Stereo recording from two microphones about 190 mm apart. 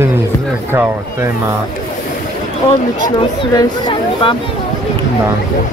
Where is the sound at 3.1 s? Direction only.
20° left (ahead or behind).